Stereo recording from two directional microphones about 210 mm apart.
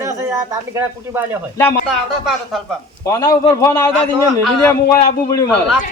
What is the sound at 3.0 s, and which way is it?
A man's voice, 15° left (ahead or behind).